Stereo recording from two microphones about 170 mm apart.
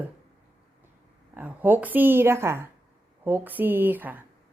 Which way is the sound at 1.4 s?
10° right (ahead or behind).